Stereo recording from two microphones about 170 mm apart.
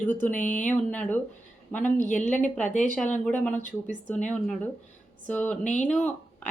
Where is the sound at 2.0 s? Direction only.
50° left (ahead or behind).